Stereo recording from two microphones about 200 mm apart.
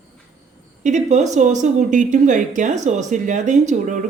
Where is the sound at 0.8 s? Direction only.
35° right (ahead or behind).